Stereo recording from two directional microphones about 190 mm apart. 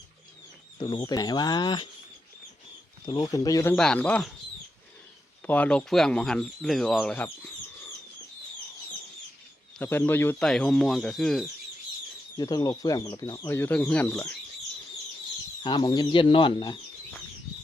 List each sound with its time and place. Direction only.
0.8 s speech: 25° left (ahead or behind)
3.1 s speech: 20° left (ahead or behind)
3.8 s speech: 5° left (ahead or behind)
5.5 s speech: 5° left (ahead or behind)
9.7 s speech: 10° left (ahead or behind)
12.4 s speech: 20° left (ahead or behind)
15.6 s speech: 20° left (ahead or behind)